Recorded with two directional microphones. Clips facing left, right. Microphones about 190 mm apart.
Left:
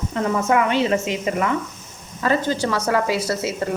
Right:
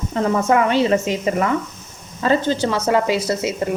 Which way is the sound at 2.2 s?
25° right (ahead or behind).